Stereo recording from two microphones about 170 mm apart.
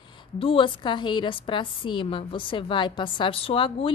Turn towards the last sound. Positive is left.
turn(degrees=30)  # may be behind; listen again after turning